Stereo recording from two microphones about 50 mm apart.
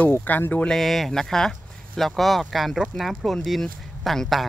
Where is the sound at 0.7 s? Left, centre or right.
Centre.